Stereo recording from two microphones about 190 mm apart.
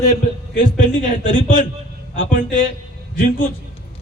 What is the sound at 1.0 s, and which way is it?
A man's voice, 45° left (ahead or behind).